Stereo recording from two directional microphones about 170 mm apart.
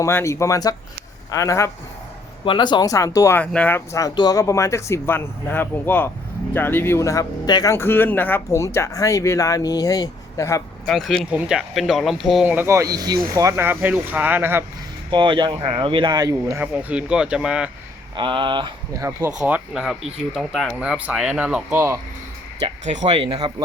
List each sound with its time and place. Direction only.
0.0 s speech: 15° left (ahead or behind)
2.4 s speech: 30° left (ahead or behind)
10.8 s speech: 5° left (ahead or behind)
15.1 s speech: 25° right (ahead or behind)
16.7 s speech: 5° right (ahead or behind)
18.2 s speech: 30° right (ahead or behind)
19.4 s speech: 5° right (ahead or behind)
22.9 s speech: 40° right (ahead or behind); by 23.6 s 25° right (ahead or behind)